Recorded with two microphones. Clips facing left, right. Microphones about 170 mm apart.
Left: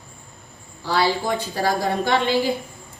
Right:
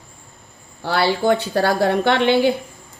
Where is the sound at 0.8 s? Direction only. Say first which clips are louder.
Right 2 dB; 65° right (ahead or behind).